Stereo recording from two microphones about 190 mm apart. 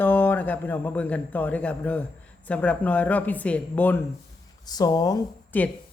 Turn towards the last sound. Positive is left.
turn(degrees=20)  # may be behind; listen again after turning